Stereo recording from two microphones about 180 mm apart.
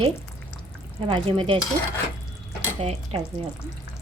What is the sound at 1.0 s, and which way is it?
Speech, 25° right (ahead or behind).